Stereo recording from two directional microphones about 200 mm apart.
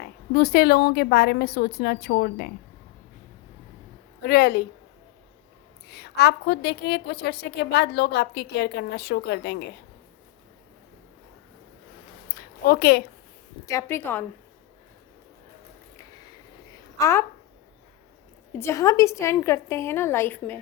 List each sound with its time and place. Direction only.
0.0 s a woman's voice: 55° left (ahead or behind)
4.2 s a woman's voice: 55° left (ahead or behind)
5.9 s a woman's voice: 55° left (ahead or behind)
12.6 s a woman's voice: 50° left (ahead or behind)
13.7 s a woman's voice: 15° left (ahead or behind)
17.0 s a woman's voice: 15° left (ahead or behind)
18.5 s a woman's voice: 15° left (ahead or behind)